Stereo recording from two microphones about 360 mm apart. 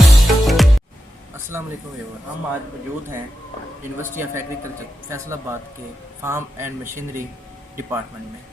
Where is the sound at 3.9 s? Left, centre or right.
Centre.